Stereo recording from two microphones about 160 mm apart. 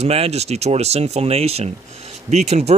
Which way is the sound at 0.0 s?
40° right (ahead or behind).